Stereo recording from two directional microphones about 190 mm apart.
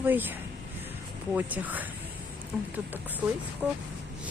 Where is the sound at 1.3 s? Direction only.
10° right (ahead or behind).